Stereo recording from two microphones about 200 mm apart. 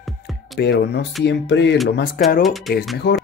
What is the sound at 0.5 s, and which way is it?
Speech, 55° left (ahead or behind).